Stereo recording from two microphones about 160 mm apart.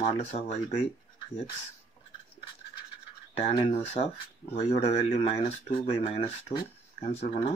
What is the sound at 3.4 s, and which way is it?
Speech, 40° left (ahead or behind).